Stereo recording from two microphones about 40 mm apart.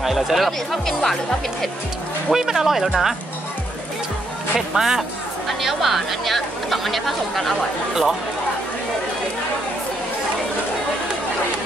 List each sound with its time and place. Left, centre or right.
0.0 s music: centre
0.5 s speech: centre
2.3 s speech: centre
4.6 s speech: centre
7.9 s speech: centre